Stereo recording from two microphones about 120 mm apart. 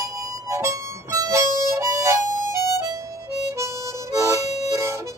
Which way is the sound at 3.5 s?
25° right (ahead or behind).